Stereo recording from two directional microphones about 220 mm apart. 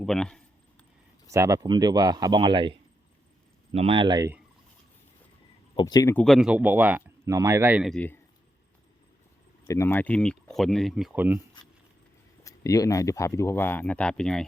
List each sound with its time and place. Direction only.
0.0 s speech: 5° left (ahead or behind)
1.3 s speech: 15° right (ahead or behind)
5.7 s speech: 15° left (ahead or behind)
6.2 s speech: centre (ahead or behind)
9.6 s speech: 15° left (ahead or behind); by 11.3 s 5° right (ahead or behind)
12.4 s speech: 15° left (ahead or behind)